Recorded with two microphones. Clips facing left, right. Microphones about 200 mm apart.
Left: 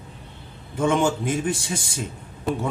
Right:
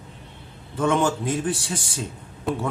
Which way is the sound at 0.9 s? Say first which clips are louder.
Even; 20° left (ahead or behind).